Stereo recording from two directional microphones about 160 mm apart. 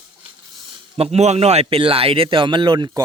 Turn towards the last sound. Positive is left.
turn(degrees=-25)  # may be behind; listen again after turning